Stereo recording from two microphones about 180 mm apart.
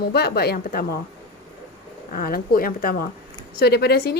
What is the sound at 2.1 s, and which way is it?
Speech, 55° left (ahead or behind).